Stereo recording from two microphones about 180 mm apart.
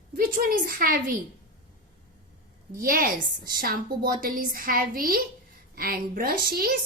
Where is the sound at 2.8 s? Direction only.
50° right (ahead or behind).